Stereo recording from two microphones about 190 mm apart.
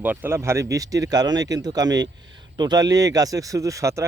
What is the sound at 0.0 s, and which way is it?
Speech, 10° right (ahead or behind).